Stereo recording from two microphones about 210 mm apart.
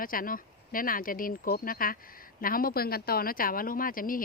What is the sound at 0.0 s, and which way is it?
Speech, 40° left (ahead or behind).